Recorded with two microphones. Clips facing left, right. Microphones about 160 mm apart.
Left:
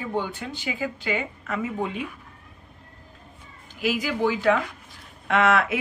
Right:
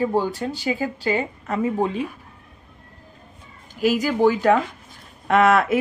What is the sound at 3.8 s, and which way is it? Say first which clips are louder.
A woman's voice: right 6 dB; 40° right (ahead or behind).